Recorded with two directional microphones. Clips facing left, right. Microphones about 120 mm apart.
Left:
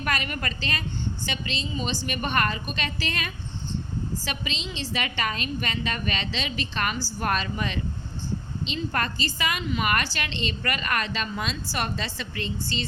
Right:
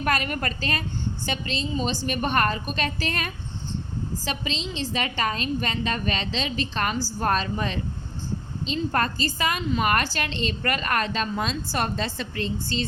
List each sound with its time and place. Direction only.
0.0 s a woman's voice: 45° right (ahead or behind)